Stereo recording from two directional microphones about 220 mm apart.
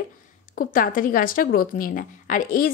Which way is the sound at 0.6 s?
40° left (ahead or behind).